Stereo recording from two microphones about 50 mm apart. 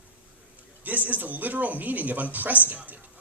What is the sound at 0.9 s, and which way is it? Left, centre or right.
Speech, right.